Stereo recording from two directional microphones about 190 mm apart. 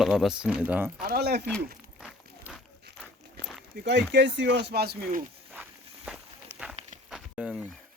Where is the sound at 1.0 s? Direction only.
55° right (ahead or behind).